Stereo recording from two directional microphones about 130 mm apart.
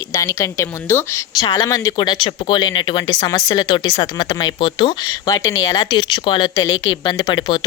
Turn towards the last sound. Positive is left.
turn(degrees=35)  # may be behind; listen again after turning